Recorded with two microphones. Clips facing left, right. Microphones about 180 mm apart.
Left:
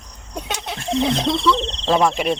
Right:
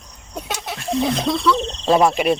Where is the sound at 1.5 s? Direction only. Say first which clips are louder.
Right 2 dB; 10° right (ahead or behind).